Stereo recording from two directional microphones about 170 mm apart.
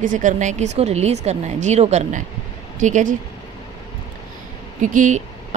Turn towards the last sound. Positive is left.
turn(degrees=-45)  # may be behind; listen again after turning